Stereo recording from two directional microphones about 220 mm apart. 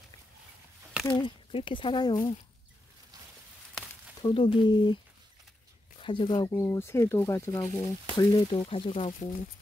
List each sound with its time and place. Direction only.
1.0 s speech: 20° left (ahead or behind)
4.2 s speech: 20° left (ahead or behind)
5.9 s speech: 20° left (ahead or behind)